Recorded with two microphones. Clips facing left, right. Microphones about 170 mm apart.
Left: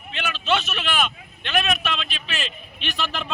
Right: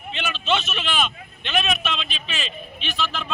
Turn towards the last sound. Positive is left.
turn(degrees=15)  # may be behind; listen again after turning